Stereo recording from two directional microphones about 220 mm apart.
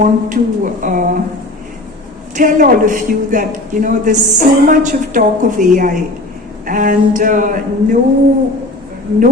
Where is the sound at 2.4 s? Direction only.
35° right (ahead or behind).